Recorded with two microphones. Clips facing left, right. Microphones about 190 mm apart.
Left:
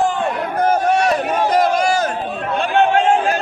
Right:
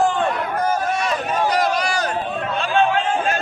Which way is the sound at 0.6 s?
65° left (ahead or behind).